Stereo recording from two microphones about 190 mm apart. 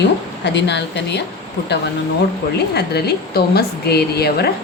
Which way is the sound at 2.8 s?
60° left (ahead or behind).